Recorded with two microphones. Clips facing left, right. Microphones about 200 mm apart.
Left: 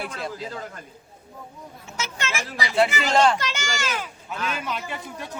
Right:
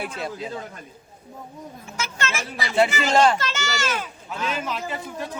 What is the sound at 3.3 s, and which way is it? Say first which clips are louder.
Speech: right 2 dB; 15° left (ahead or behind).